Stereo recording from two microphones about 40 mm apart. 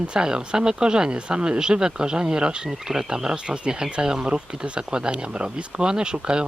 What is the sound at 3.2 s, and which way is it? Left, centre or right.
Speech, right.